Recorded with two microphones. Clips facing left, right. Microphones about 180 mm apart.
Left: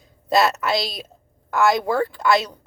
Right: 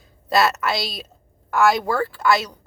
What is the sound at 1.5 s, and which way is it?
A woman's voice, 20° left (ahead or behind).